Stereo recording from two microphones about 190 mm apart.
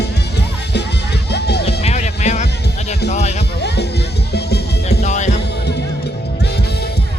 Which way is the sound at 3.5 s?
60° left (ahead or behind).